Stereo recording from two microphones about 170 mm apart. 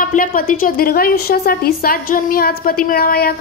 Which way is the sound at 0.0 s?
55° left (ahead or behind).